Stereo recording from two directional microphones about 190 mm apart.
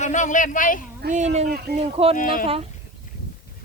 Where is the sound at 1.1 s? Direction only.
40° right (ahead or behind).